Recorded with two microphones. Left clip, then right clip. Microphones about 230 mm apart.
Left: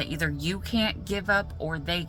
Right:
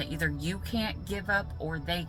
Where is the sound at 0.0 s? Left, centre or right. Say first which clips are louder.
Left 3 dB; left.